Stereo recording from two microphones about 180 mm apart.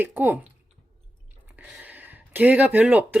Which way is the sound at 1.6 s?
5° right (ahead or behind).